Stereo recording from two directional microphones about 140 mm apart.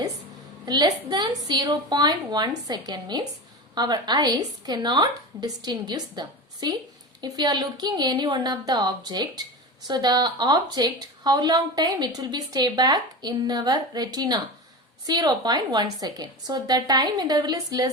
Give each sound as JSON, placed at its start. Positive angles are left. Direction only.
{"t": 0.6, "sound": "a woman's voice", "side_deg": -30}